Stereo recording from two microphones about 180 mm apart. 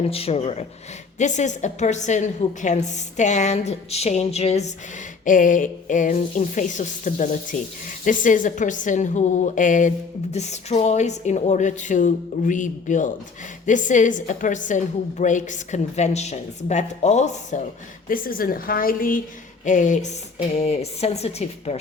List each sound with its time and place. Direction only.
0.1 s a woman's voice: 35° left (ahead or behind)
18.1 s a woman's voice: 55° left (ahead or behind); by 21.8 s 35° left (ahead or behind)